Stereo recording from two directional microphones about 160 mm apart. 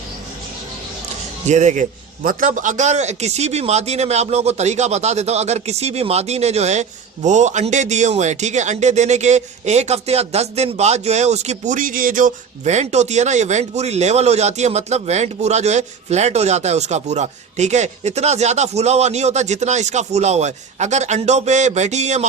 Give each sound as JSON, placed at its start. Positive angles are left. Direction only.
{"t": 1.5, "sound": "a man's voice", "side_deg": -45}